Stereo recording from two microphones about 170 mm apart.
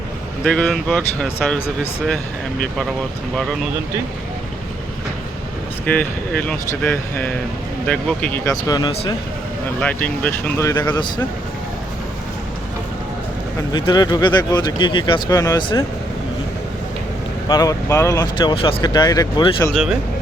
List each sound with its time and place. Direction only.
0.4 s speech: 5° left (ahead or behind)
5.8 s speech: 10° left (ahead or behind)
9.8 s speech: 10° left (ahead or behind); by 11.0 s 25° left (ahead or behind)
13.7 s speech: 25° left (ahead or behind)
17.5 s speech: 20° left (ahead or behind)